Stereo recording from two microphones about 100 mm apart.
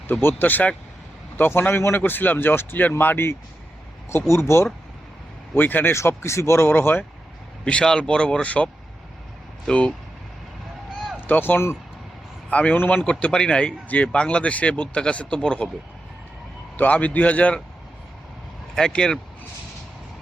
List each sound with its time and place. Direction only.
0.1 s speech: 20° left (ahead or behind)
7.6 s speech: 10° left (ahead or behind)
11.3 s speech: 20° left (ahead or behind)
16.7 s speech: 15° left (ahead or behind)
18.7 s speech: 5° left (ahead or behind)